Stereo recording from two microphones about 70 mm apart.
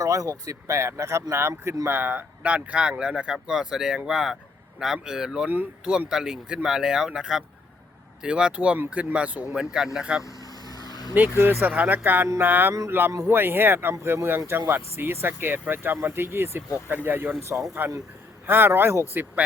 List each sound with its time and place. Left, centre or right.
0.0 s speech: right
1.9 s speech: right
5.5 s speech: right
6.1 s speech: centre
10.2 s vehicle: left
11.1 s speech: right